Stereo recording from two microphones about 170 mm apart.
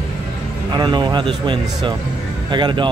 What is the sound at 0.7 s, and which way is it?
A man's voice, 25° right (ahead or behind).